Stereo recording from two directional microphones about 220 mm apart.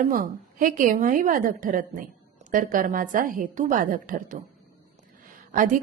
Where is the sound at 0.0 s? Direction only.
40° right (ahead or behind).